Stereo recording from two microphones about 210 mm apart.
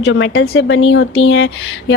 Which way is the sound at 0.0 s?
65° left (ahead or behind).